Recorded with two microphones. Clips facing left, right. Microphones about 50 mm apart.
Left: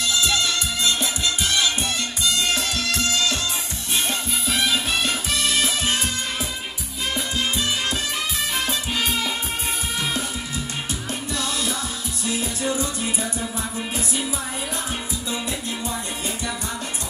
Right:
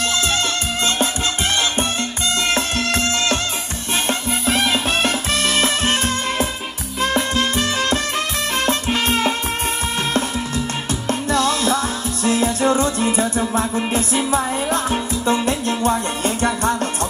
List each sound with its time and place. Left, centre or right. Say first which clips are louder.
0.0 s music: right 2 dB; right
11.1 s music: right 12 dB; right